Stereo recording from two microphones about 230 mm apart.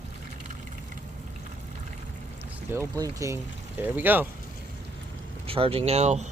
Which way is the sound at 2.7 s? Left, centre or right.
Centre.